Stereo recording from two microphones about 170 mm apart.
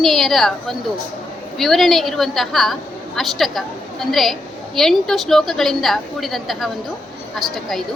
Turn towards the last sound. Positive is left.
turn(degrees=0)  # may be behind; listen again after turning